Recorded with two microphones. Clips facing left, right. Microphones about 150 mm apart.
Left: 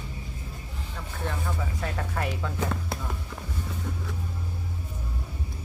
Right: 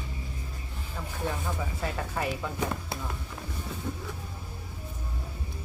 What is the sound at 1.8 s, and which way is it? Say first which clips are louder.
Speech: even; 5° right (ahead or behind).